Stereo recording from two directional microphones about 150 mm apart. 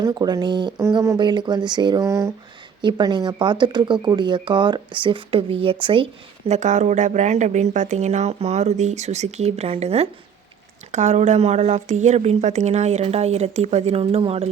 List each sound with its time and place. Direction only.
0.0 s speech: 25° right (ahead or behind)
2.8 s speech: 30° right (ahead or behind)
6.5 s a woman's voice: 55° right (ahead or behind)